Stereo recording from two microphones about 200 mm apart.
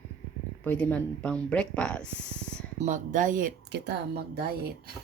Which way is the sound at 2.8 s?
40° right (ahead or behind).